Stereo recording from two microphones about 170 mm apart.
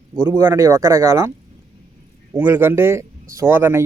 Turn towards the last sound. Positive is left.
turn(degrees=-15)  # may be behind; listen again after turning